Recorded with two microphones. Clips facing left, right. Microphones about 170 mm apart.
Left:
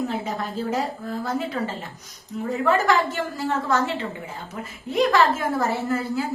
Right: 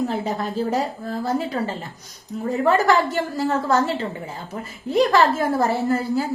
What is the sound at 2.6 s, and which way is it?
A woman's voice, 35° right (ahead or behind).